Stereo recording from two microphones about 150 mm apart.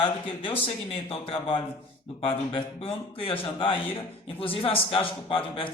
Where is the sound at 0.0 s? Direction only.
35° left (ahead or behind).